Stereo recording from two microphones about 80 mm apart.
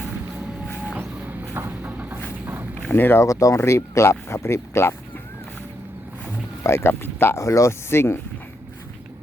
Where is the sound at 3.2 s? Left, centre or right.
Left.